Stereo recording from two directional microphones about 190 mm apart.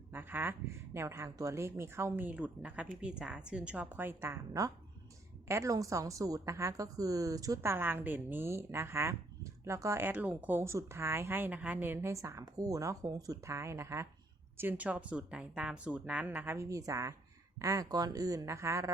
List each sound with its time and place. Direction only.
0.1 s a woman's voice: 10° right (ahead or behind)